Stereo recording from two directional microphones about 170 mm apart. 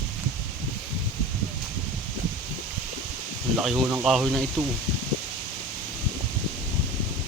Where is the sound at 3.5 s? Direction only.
5° right (ahead or behind).